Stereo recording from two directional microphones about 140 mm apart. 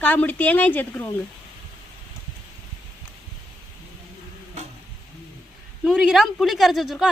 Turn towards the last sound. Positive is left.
turn(degrees=0)  # may be behind; listen again after turning